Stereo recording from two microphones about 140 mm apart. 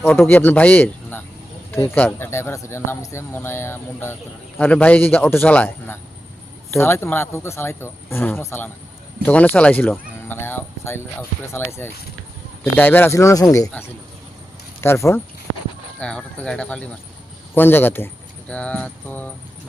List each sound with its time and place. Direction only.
0.0 s speech: 15° left (ahead or behind)
16.0 s speech: 5° left (ahead or behind)